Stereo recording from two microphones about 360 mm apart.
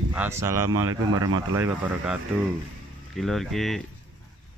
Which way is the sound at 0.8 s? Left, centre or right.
Right.